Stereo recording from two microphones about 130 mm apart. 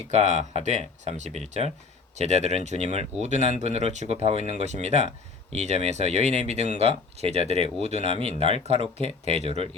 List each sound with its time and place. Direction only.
0.0 s speech: 60° right (ahead or behind)